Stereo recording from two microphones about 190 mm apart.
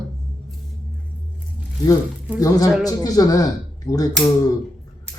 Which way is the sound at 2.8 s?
20° left (ahead or behind).